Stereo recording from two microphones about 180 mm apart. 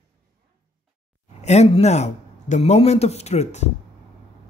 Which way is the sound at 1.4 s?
40° left (ahead or behind).